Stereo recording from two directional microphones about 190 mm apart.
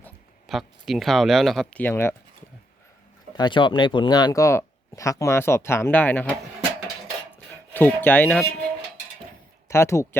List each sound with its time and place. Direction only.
0.4 s speech: centre (ahead or behind)
3.3 s speech: 25° left (ahead or behind)
7.7 s speech: 10° left (ahead or behind)
9.6 s speech: 15° left (ahead or behind)